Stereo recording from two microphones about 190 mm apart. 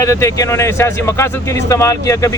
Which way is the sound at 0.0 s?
15° left (ahead or behind).